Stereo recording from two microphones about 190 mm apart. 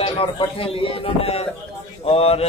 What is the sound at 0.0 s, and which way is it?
Speech, 30° left (ahead or behind).